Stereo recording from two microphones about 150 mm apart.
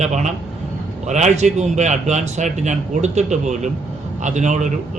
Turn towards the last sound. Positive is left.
turn(degrees=-55)  # may be behind; listen again after turning